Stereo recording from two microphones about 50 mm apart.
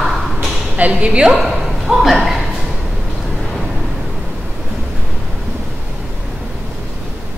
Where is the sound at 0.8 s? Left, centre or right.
Right.